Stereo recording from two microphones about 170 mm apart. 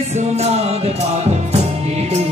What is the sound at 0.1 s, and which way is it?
Music, 40° right (ahead or behind).